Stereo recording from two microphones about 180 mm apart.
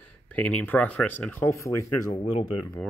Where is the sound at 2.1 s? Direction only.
35° left (ahead or behind).